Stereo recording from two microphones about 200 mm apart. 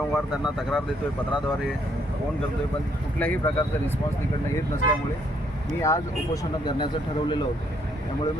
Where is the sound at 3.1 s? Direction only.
10° left (ahead or behind).